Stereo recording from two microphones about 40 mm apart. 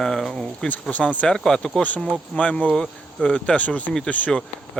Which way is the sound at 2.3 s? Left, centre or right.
Left.